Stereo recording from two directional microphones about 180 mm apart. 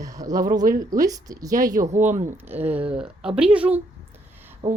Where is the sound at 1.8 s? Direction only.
40° right (ahead or behind).